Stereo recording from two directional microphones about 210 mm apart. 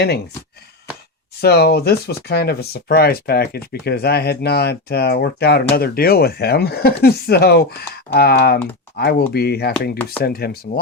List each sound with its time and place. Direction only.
1.4 s speech: 50° left (ahead or behind)